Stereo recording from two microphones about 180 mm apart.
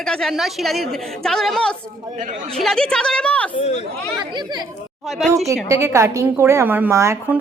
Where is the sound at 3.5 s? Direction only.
35° left (ahead or behind).